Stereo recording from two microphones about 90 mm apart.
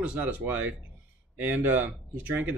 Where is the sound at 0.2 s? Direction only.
15° right (ahead or behind).